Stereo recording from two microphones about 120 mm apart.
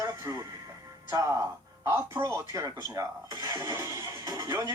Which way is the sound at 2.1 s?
30° right (ahead or behind).